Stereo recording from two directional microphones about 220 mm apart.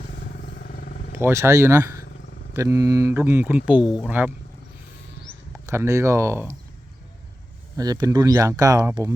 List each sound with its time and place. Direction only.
0.4 s vehicle: 45° left (ahead or behind)
1.1 s speech: 10° right (ahead or behind)
5.6 s speech: 10° right (ahead or behind)
7.8 s speech: 15° right (ahead or behind)